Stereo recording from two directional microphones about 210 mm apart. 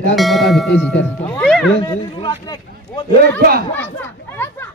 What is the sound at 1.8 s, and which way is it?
Speech, 20° left (ahead or behind).